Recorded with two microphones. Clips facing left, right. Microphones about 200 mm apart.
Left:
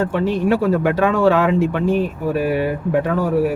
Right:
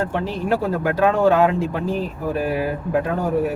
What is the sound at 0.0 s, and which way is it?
Speech, 70° left (ahead or behind).